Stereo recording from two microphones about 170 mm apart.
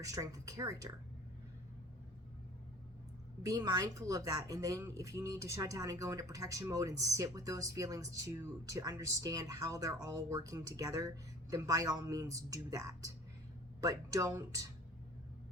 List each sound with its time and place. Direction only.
0.0 s a woman's voice: 20° right (ahead or behind)
3.4 s a woman's voice: 20° right (ahead or behind)